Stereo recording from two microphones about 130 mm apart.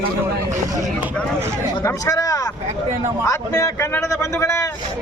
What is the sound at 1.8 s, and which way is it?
A man's voice, 25° left (ahead or behind).